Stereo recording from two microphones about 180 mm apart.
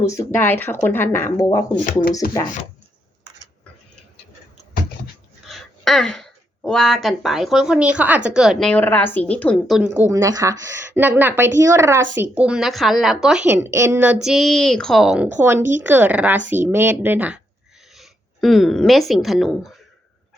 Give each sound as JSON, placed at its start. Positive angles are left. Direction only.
{"t": 0.0, "sound": "speech", "side_deg": 15}
{"t": 1.9, "sound": "speech", "side_deg": 50}
{"t": 5.5, "sound": "speech", "side_deg": 0}
{"t": 12.4, "sound": "a woman's voice", "side_deg": -5}